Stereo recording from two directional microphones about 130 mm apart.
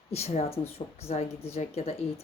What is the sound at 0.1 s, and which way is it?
A woman's voice, 55° left (ahead or behind).